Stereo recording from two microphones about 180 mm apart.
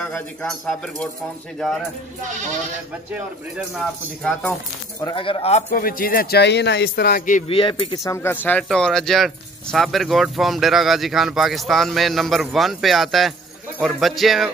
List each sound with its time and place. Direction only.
0.0 s speech: 5° left (ahead or behind)
3.1 s speech: 5° right (ahead or behind)
4.2 s speech: 5° left (ahead or behind)
5.0 s speech: 30° left (ahead or behind)
5.7 s speech: 55° left (ahead or behind)
7.4 s speech: 30° left (ahead or behind); by 14.5 s centre (ahead or behind)